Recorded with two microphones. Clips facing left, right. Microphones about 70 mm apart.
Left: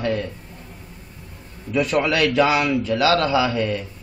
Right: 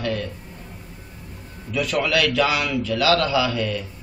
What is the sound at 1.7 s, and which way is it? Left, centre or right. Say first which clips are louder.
Speech: left 2 dB; left.